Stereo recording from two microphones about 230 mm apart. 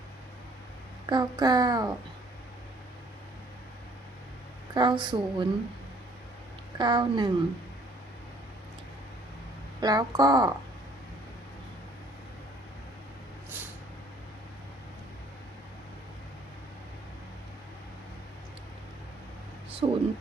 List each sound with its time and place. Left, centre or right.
1.0 s speech: centre
4.7 s a woman's voice: centre
6.7 s a woman's voice: centre
9.8 s speech: centre
19.8 s a woman's voice: right